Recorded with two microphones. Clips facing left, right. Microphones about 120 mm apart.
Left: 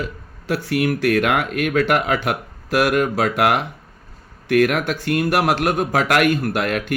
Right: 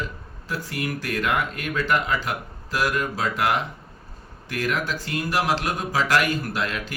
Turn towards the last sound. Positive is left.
turn(degrees=65)  # may be behind; listen again after turning